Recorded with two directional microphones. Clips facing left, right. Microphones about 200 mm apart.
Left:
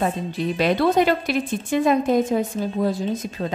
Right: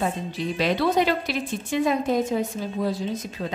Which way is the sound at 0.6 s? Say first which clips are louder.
Left 3 dB; 55° left (ahead or behind).